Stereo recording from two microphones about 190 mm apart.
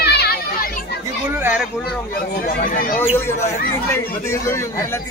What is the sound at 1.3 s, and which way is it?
Speech, 10° right (ahead or behind).